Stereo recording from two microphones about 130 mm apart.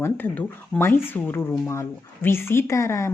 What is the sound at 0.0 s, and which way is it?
A woman's voice, 15° left (ahead or behind).